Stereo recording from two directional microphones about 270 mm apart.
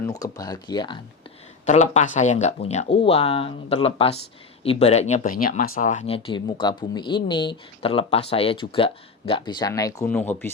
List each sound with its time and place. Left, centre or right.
0.0 s speech: centre